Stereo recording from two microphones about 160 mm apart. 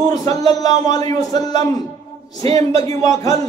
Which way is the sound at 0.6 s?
25° left (ahead or behind).